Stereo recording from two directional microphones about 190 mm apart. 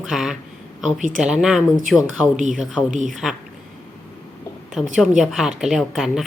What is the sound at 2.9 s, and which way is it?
Speech, 40° right (ahead or behind).